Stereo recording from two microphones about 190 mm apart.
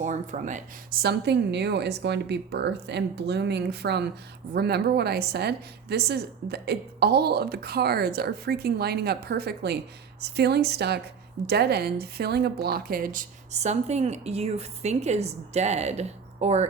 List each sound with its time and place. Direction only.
0.0 s a woman's voice: 40° right (ahead or behind)
1.0 s a woman's voice: 60° right (ahead or behind); by 16.6 s 35° right (ahead or behind)